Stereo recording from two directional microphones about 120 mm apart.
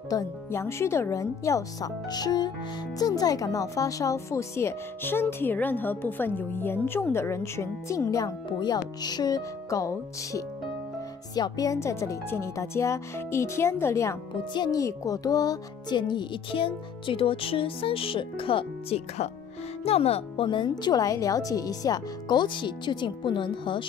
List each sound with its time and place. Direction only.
0.1 s speech: 20° left (ahead or behind)
14.5 s speech: 35° left (ahead or behind); by 20.4 s 55° left (ahead or behind)
20.4 s speech: 40° left (ahead or behind)